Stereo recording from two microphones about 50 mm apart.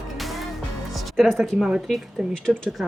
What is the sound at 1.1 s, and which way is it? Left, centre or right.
A woman's voice, centre.